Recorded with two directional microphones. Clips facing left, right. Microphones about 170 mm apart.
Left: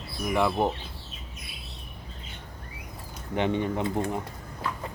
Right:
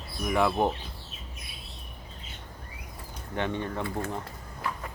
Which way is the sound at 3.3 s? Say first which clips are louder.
Left 4 dB; 20° left (ahead or behind).